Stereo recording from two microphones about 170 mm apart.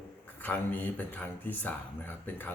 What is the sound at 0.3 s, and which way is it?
Speech, 10° left (ahead or behind).